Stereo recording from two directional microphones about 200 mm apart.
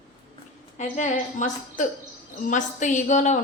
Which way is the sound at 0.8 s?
35° left (ahead or behind).